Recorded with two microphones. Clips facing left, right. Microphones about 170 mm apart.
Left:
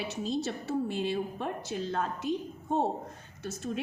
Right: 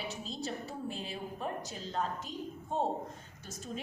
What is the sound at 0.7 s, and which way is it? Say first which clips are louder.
A woman's voice: left 10 dB; 80° left.